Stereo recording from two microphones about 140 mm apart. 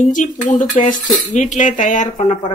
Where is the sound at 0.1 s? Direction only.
65° left (ahead or behind).